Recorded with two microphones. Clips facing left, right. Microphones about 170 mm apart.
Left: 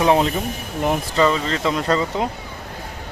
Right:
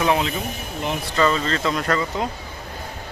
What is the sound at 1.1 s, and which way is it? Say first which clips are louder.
Speech: right 1 dB; 15° left (ahead or behind).